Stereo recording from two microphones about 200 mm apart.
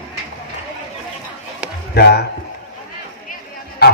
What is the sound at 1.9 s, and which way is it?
Speech, 55° left (ahead or behind).